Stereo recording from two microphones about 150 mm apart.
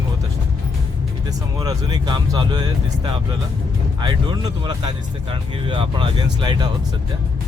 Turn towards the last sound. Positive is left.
turn(degrees=-30)  # may be behind; listen again after turning